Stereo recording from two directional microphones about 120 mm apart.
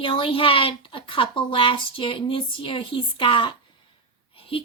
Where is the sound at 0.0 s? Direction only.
45° left (ahead or behind).